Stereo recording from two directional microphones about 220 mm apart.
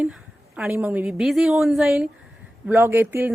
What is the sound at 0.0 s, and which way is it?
A woman's voice, 5° right (ahead or behind).